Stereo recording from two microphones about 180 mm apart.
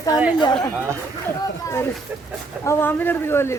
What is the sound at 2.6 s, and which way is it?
Speech, 15° left (ahead or behind).